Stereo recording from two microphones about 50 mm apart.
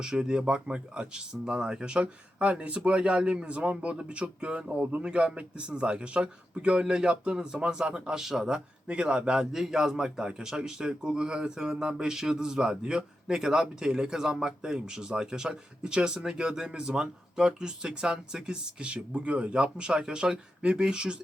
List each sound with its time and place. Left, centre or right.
0.0 s a man's voice: centre